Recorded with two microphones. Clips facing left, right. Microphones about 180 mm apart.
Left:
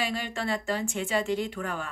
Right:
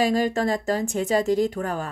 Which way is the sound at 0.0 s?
40° right (ahead or behind).